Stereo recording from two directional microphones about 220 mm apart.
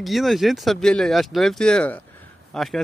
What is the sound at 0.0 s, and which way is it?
Speech, centre (ahead or behind).